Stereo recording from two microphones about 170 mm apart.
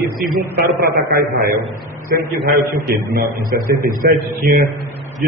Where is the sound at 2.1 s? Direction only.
70° right (ahead or behind).